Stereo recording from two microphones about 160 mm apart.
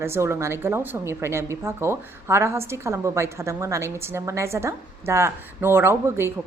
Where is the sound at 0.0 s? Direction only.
15° right (ahead or behind).